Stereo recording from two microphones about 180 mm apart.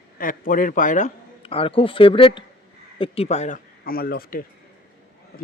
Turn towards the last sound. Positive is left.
turn(degrees=55)  # may be behind; listen again after turning